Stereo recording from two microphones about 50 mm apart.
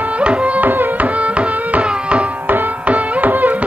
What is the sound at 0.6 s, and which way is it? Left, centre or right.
Carnatic music, right.